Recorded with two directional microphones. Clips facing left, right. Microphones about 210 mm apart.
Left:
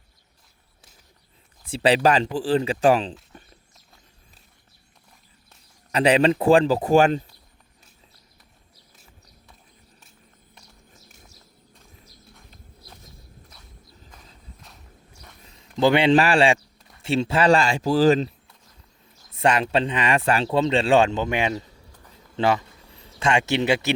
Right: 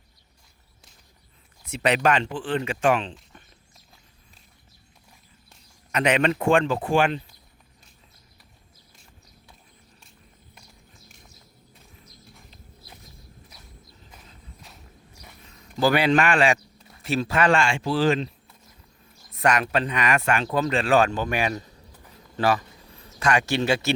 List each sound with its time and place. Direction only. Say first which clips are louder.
1.6 s speech: left 3 dB; 30° left (ahead or behind)
5.9 s speech: left 4 dB; 30° left (ahead or behind)
15.8 s speech: left 3 dB; 25° left (ahead or behind)
19.3 s speech: left 2 dB; 30° left (ahead or behind)